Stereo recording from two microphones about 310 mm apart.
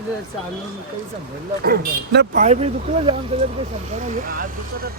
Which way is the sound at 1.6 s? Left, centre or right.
Right.